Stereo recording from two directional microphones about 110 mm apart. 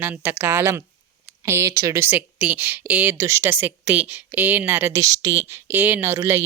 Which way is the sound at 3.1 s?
25° right (ahead or behind).